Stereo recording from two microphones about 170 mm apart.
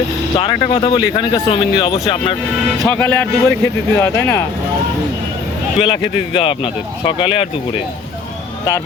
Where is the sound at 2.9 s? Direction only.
10° left (ahead or behind).